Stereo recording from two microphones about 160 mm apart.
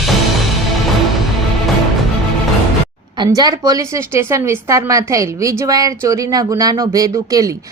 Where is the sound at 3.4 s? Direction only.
20° right (ahead or behind).